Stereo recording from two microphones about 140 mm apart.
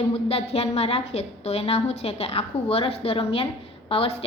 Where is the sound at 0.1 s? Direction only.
45° left (ahead or behind).